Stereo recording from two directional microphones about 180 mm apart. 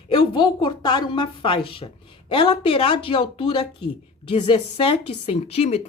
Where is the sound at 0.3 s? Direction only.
25° left (ahead or behind).